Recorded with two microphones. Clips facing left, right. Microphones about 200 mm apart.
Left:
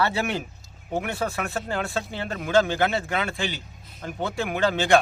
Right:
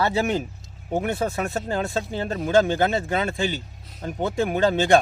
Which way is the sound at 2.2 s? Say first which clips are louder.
Right 2 dB; 30° right (ahead or behind).